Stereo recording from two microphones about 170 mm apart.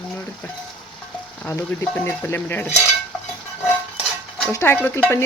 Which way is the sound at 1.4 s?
15° left (ahead or behind).